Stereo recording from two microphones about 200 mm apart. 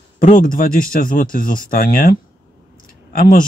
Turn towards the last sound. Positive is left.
turn(degrees=45)  # may be behind; listen again after turning